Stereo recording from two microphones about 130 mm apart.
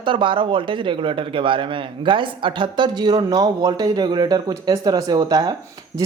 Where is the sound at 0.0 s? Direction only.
40° right (ahead or behind).